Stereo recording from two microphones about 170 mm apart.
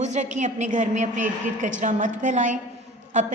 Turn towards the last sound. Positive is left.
turn(degrees=-45)  # may be behind; listen again after turning